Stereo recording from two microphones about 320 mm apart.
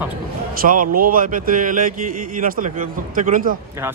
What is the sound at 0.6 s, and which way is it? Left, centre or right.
Speech, right.